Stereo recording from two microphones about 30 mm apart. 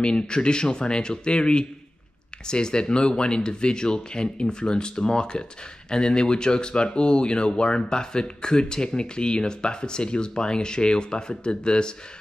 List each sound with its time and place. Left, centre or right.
0.0 s speech: left